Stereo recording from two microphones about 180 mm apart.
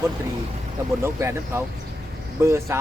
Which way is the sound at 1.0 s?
15° right (ahead or behind).